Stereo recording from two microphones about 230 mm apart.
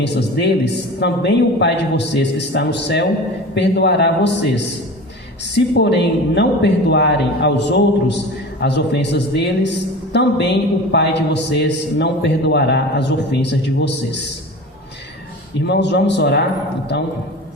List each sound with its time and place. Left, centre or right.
0.0 s a man's voice: left
15.6 s a man's voice: left